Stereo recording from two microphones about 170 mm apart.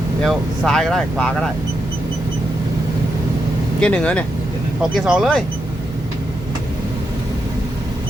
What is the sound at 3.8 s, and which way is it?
Speech, 5° left (ahead or behind).